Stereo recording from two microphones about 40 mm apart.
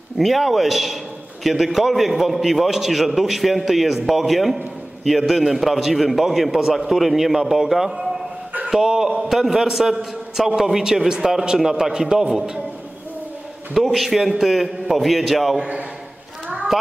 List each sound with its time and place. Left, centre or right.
0.2 s a man's voice: centre
13.9 s a man's voice: centre